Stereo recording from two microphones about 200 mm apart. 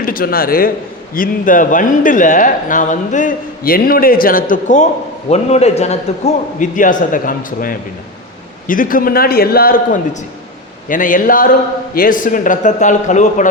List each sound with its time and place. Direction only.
0.0 s a man's voice: 45° left (ahead or behind)